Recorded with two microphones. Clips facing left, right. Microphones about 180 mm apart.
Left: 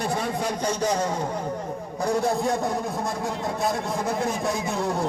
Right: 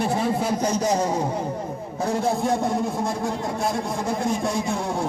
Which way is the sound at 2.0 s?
Centre (ahead or behind).